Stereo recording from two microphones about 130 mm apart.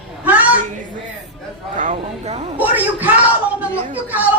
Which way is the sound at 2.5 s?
15° right (ahead or behind).